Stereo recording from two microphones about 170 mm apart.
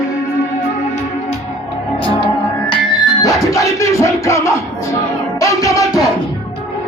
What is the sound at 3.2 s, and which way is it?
Music, 20° left (ahead or behind).